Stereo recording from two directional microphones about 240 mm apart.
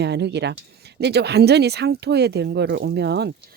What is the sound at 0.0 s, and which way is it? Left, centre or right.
Speech, right.